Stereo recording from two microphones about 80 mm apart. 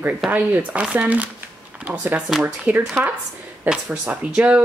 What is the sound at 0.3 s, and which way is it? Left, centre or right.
A woman's voice, centre.